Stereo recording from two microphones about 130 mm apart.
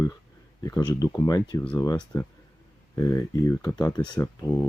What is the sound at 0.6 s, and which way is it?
Speech, 30° left (ahead or behind).